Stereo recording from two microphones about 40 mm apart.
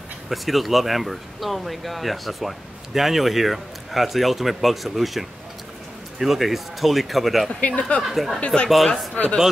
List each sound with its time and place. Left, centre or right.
0.3 s speech: centre
7.6 s speech: left
8.0 s speech: centre
9.1 s speech: left